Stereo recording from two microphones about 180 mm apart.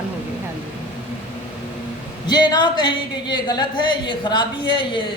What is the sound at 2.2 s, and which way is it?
A man's voice, 25° left (ahead or behind).